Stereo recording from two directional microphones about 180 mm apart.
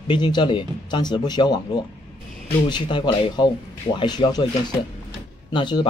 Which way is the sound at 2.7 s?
25° left (ahead or behind).